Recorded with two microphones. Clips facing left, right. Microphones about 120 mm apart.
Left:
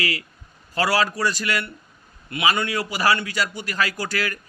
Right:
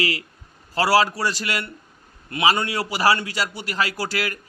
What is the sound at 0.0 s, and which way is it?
A man's voice, 25° right (ahead or behind).